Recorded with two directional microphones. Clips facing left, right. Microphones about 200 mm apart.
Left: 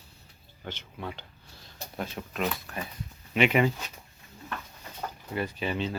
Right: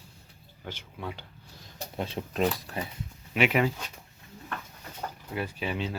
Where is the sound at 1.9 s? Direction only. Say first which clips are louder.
Right 3 dB; 25° right (ahead or behind).